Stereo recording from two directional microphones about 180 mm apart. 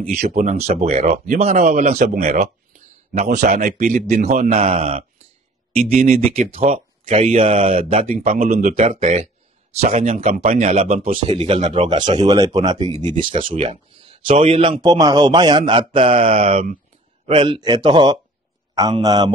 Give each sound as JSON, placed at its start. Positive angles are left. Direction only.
{"t": 0.0, "sound": "speech", "side_deg": -50}
{"t": 2.1, "sound": "a sound", "side_deg": -40}
{"t": 3.4, "sound": "a man's voice", "side_deg": -40}
{"t": 8.5, "sound": "a man's voice", "side_deg": -50}